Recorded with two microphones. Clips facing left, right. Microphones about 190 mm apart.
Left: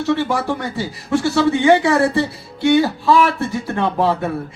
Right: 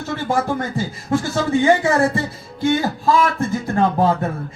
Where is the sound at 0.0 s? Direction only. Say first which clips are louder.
Left 3 dB; 75° left (ahead or behind).